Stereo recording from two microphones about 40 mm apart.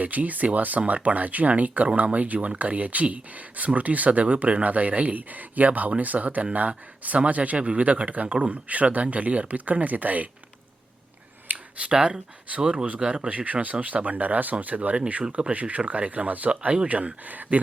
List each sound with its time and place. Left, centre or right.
0.0 s speech: right
11.4 s a sound: right
11.9 s speech: centre
12.5 s speech: right
13.2 s speech: right
16.5 s speech: right